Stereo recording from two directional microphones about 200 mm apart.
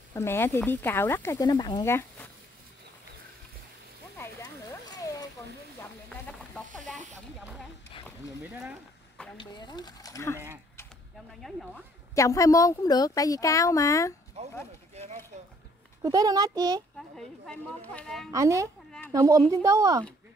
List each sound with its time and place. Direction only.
0.1 s speech: 10° left (ahead or behind)
4.2 s a sound: 20° left (ahead or behind)
5.8 s a sound: 5° left (ahead or behind)
7.3 s speech: 5° right (ahead or behind)
9.4 s speech: 20° left (ahead or behind)
12.2 s speech: 15° left (ahead or behind)
14.4 s chop: 35° right (ahead or behind)
15.3 s a sound: 35° right (ahead or behind)
16.0 s a child's voice: 20° right (ahead or behind)
17.2 s speech: 5° left (ahead or behind)
18.3 s speech: 15° right (ahead or behind)
18.9 s speech: 10° left (ahead or behind)
19.1 s speech: 15° right (ahead or behind)